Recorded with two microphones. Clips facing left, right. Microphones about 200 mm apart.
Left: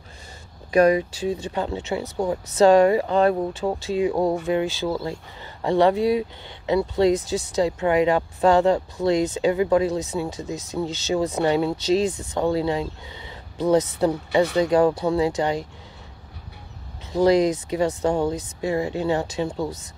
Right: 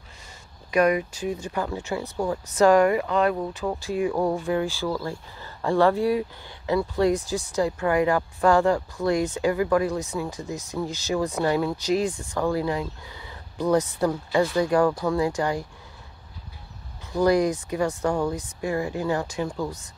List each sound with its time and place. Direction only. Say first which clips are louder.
0.7 s speech: left 4 dB; 30° left (ahead or behind)
17.1 s speech: left 3 dB; 20° left (ahead or behind)